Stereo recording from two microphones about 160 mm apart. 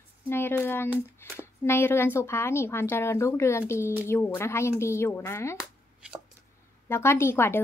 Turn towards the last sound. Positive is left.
turn(degrees=15)  # may be behind; listen again after turning